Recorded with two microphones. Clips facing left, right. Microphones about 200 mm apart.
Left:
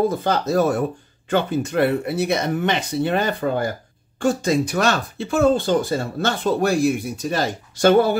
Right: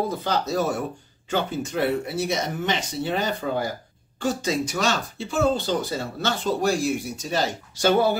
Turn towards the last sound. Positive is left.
turn(degrees=55)  # may be behind; listen again after turning